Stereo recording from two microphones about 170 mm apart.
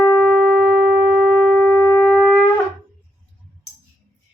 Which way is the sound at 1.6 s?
15° left (ahead or behind).